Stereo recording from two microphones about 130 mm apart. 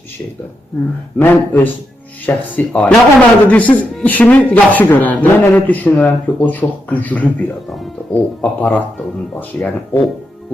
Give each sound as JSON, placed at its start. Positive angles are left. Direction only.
{"t": 1.2, "sound": "a man's voice", "side_deg": 15}